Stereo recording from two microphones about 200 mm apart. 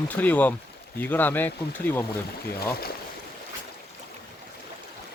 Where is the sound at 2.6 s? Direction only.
50° left (ahead or behind).